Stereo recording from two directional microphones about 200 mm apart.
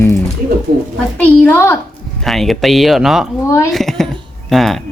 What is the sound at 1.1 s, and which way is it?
A woman's voice, 5° left (ahead or behind).